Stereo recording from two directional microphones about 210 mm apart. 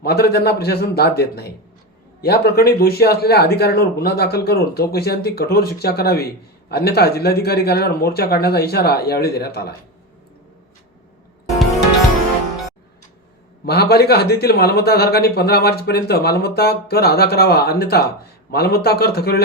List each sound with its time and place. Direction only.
0.0 s a man's voice: 50° left (ahead or behind)
13.7 s a man's voice: 50° left (ahead or behind)